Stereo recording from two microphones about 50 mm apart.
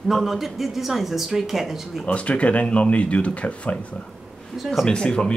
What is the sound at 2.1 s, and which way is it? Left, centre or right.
Speech, left.